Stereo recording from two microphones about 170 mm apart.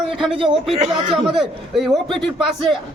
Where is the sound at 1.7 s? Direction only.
Centre (ahead or behind).